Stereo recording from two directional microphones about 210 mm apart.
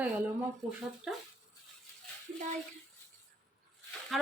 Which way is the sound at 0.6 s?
Centre (ahead or behind).